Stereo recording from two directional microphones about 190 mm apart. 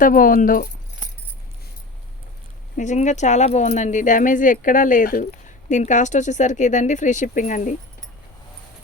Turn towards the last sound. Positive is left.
turn(degrees=40)  # may be behind; listen again after turning